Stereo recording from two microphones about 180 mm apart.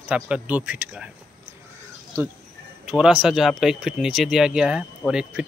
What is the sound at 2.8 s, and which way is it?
Speech, 5° right (ahead or behind).